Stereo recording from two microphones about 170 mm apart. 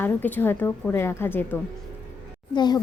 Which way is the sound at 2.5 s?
25° left (ahead or behind).